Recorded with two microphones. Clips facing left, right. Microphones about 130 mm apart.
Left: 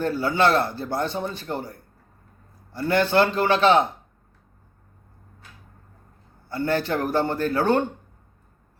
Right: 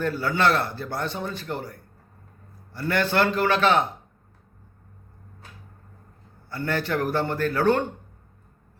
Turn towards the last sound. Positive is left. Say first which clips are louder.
# left 1 dB
turn(degrees=30)  # may be behind; listen again after turning